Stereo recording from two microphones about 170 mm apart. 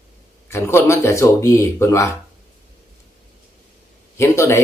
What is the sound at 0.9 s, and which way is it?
Speech, 15° left (ahead or behind).